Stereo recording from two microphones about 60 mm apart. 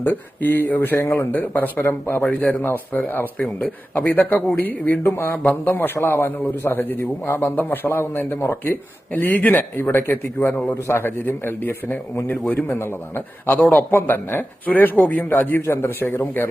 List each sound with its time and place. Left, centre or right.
0.0 s speech: left
1.9 s speech: left
2.2 s speech: left